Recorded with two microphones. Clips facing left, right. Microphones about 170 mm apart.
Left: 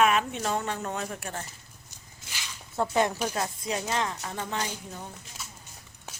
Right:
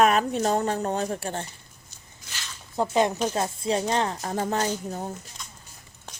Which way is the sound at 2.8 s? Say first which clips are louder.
Right 3 dB; 20° right (ahead or behind).